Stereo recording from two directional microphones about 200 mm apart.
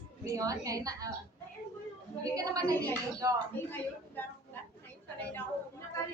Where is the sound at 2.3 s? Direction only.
15° right (ahead or behind).